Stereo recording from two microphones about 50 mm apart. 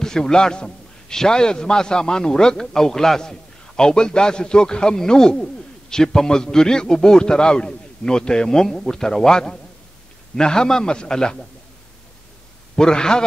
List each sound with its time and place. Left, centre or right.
0.0 s a man's voice: centre
12.7 s a man's voice: centre